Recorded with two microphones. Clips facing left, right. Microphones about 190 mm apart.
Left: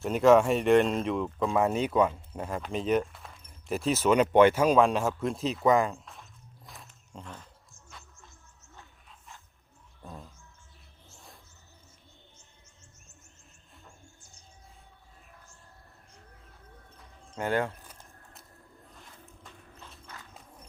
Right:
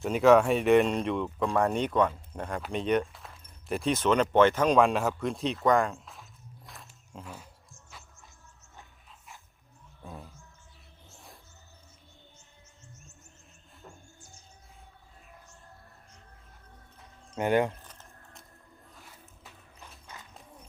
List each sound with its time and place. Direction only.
0.0 s speech: centre (ahead or behind)
6.7 s walk: centre (ahead or behind)
10.0 s music: 5° right (ahead or behind)
17.3 s speech: 15° right (ahead or behind)
17.8 s a sound: 10° left (ahead or behind)
19.5 s clip-clop: 10° right (ahead or behind)